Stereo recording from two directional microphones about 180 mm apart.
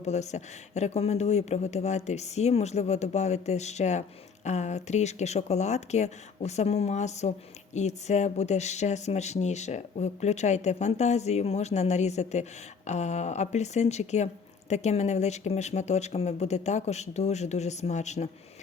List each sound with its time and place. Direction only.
0.0 s speech: 40° left (ahead or behind)